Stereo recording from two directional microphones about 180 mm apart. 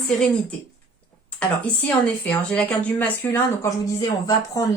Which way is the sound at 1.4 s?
10° left (ahead or behind).